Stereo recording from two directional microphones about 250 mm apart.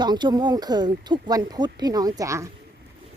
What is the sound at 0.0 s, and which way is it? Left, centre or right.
Speech, centre.